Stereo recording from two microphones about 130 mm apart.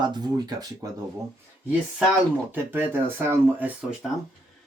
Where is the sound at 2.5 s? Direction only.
15° right (ahead or behind).